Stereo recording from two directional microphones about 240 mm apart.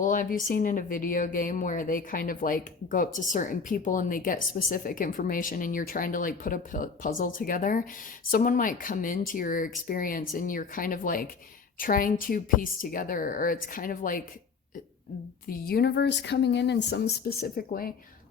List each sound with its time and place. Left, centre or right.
0.0 s speech: left
15.4 s speech: left